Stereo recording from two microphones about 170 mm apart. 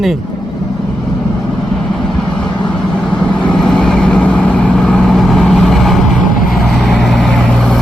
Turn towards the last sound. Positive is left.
turn(degrees=5)  # may be behind; listen again after turning